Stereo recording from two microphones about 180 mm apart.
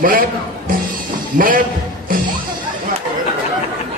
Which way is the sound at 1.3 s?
50° right (ahead or behind).